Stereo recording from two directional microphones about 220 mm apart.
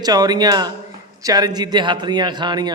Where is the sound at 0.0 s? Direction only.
15° right (ahead or behind).